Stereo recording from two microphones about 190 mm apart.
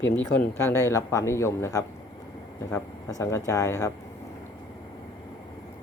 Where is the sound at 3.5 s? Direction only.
15° left (ahead or behind).